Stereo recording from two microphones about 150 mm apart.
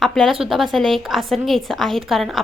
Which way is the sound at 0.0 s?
Centre (ahead or behind).